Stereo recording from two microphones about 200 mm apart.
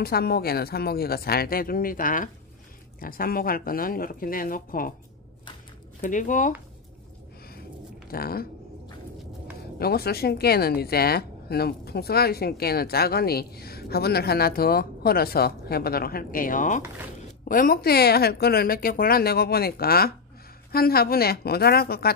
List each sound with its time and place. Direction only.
0.0 s speech: 50° left (ahead or behind)
5.9 s speech: 40° left (ahead or behind)
8.1 s speech: 50° left (ahead or behind)
9.8 s speech: 50° left (ahead or behind)